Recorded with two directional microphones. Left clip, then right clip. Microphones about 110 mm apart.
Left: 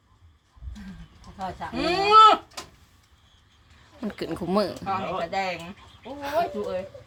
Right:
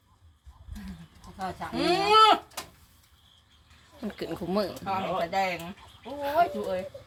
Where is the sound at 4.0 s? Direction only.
40° left (ahead or behind).